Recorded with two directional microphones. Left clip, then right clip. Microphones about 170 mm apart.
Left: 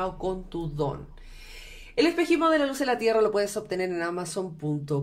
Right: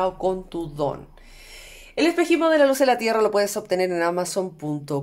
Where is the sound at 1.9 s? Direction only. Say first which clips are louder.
Right 3 dB; 35° right (ahead or behind).